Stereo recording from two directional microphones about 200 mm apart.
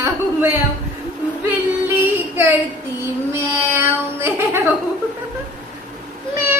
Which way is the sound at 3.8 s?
10° right (ahead or behind).